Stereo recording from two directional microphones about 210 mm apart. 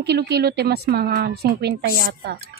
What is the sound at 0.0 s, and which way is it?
Speech, 50° right (ahead or behind).